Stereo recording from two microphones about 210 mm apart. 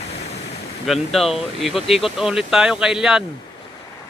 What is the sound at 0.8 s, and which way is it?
Speech, centre (ahead or behind).